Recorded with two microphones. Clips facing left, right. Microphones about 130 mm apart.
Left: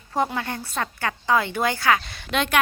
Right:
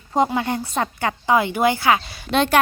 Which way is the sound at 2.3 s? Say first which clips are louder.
Right 5 dB; 35° right (ahead or behind).